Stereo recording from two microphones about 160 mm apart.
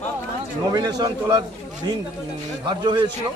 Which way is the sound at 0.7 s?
25° right (ahead or behind).